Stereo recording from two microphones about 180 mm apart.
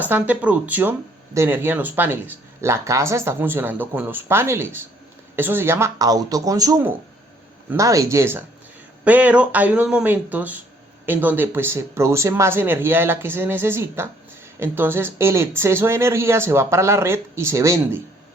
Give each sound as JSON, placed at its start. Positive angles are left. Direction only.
{"t": 0.0, "sound": "speech", "side_deg": -10}